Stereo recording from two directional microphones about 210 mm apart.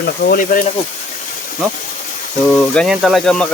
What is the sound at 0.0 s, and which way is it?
Speech, 45° left (ahead or behind).